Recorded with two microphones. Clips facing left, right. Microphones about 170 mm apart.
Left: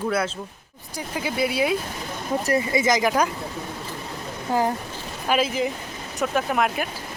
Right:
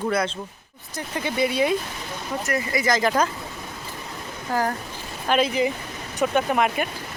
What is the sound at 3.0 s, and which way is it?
Speech, 10° left (ahead or behind).